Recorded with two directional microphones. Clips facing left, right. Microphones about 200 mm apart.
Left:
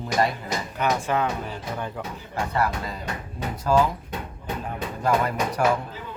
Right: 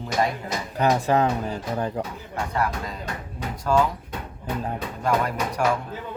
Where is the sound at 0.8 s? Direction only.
35° right (ahead or behind).